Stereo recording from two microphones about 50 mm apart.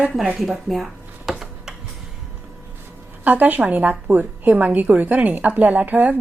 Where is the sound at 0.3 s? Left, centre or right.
Centre.